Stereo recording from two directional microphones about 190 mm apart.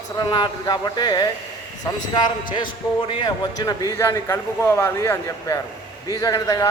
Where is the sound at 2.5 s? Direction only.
25° left (ahead or behind).